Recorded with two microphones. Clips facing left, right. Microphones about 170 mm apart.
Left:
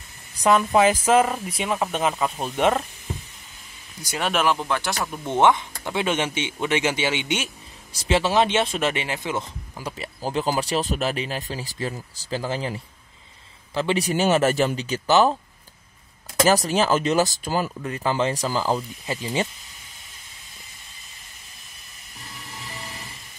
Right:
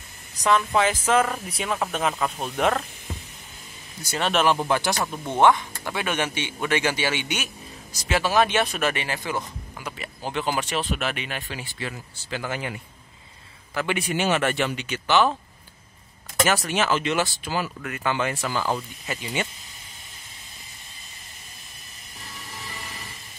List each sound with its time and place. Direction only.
0.4 s speech: 25° left (ahead or behind); by 2.7 s 5° left (ahead or behind)
4.0 s speech: 10° left (ahead or behind)
4.6 s speech: 15° right (ahead or behind)
4.8 s speech: 5° right (ahead or behind)
5.2 s speech: 20° left (ahead or behind)
9.8 s speech: 35° left (ahead or behind)
13.7 s speech: 30° left (ahead or behind)
16.4 s speech: 35° left (ahead or behind)
17.8 s speech: 30° left (ahead or behind)